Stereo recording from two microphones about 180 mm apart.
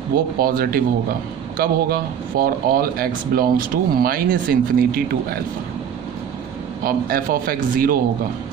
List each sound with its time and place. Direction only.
0.1 s speech: 55° right (ahead or behind)
6.8 s speech: 55° right (ahead or behind)